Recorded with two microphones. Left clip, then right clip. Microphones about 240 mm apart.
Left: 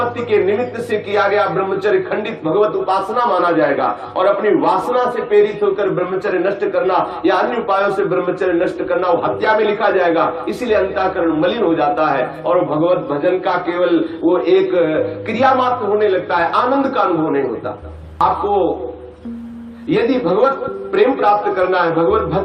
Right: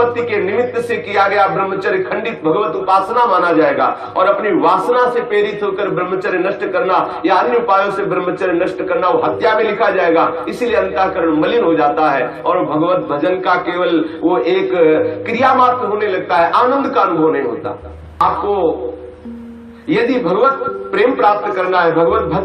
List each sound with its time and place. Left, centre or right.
0.3 s a man's voice: right
19.9 s a man's voice: right